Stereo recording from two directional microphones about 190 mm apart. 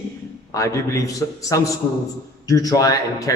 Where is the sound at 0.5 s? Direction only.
15° left (ahead or behind).